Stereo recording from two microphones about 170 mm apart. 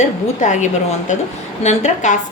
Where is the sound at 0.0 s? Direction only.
45° left (ahead or behind).